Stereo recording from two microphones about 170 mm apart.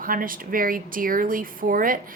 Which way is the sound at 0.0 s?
55° right (ahead or behind).